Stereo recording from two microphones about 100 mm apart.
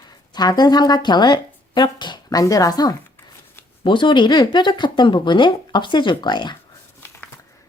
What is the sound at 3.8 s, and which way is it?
Speech, 55° left (ahead or behind).